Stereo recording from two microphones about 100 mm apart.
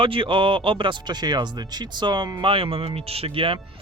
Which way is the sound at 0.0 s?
60° right (ahead or behind).